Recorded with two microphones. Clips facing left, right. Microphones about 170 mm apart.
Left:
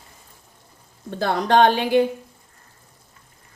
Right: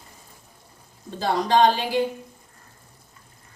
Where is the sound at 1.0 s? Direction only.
60° left (ahead or behind).